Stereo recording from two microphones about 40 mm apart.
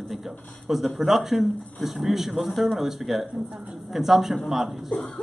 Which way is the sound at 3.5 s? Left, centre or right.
Centre.